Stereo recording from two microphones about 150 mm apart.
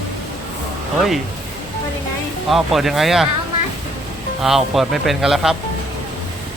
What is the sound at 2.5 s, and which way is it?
Speech, centre (ahead or behind).